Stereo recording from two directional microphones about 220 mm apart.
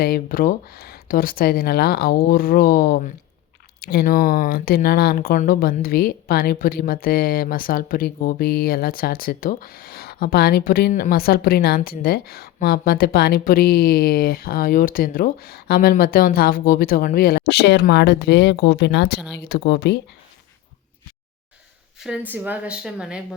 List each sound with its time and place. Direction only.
0.0 s speech: 40° left (ahead or behind)
22.0 s speech: 5° right (ahead or behind)